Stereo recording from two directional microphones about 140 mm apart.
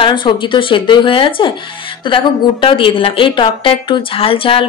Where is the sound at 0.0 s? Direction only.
35° left (ahead or behind).